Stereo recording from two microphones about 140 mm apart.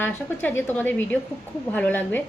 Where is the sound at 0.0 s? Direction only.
15° left (ahead or behind).